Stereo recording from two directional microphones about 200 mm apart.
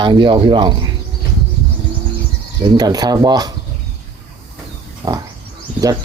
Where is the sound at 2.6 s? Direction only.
20° right (ahead or behind).